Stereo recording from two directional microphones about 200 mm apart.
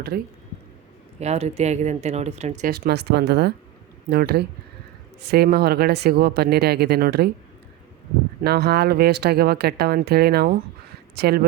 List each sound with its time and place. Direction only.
0.1 s speech: 50° right (ahead or behind)
1.2 s speech: 35° right (ahead or behind)
2.8 s speech: 55° right (ahead or behind)
8.4 s speech: 50° right (ahead or behind)